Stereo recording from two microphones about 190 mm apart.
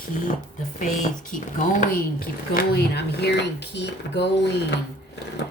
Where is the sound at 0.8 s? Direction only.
40° left (ahead or behind); by 4.8 s 65° left (ahead or behind).